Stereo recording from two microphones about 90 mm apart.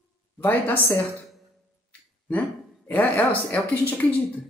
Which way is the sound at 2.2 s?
20° left (ahead or behind).